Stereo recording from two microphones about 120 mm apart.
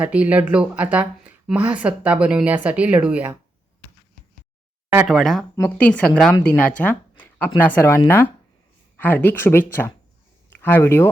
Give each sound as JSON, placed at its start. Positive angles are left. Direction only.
{"t": 0.0, "sound": "speech", "side_deg": -10}
{"t": 5.0, "sound": "speech", "side_deg": 0}